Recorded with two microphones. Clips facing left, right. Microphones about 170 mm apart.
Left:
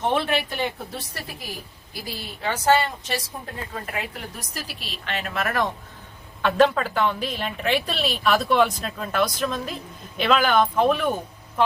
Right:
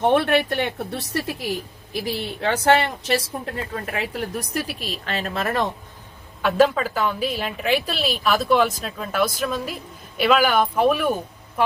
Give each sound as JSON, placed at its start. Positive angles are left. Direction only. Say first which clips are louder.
{"t": 0.0, "sound": "a woman's voice", "louder": "right 5 dB", "side_deg": -60}
{"t": 6.4, "sound": "a woman's voice", "louder": "right 1 dB", "side_deg": -5}